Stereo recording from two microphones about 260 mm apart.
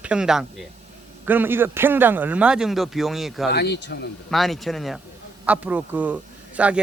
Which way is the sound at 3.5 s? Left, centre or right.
Left.